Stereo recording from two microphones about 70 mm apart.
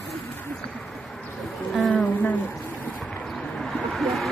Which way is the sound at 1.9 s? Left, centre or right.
Centre.